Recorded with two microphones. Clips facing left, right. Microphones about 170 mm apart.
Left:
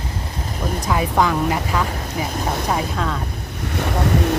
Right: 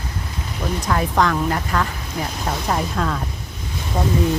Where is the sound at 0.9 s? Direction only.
5° left (ahead or behind).